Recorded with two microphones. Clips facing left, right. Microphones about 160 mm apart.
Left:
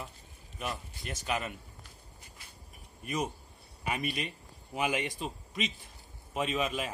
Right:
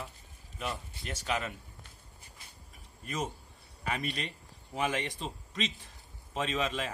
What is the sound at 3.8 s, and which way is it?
A man's voice, 15° left (ahead or behind).